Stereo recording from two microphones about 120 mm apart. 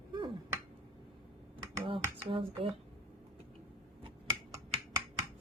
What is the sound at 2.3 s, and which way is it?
Speech, 45° right (ahead or behind).